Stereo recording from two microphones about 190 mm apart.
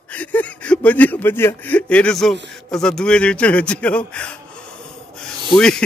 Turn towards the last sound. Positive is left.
turn(degrees=5)  # may be behind; listen again after turning